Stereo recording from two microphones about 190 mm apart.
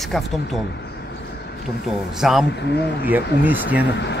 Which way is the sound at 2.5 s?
65° left (ahead or behind).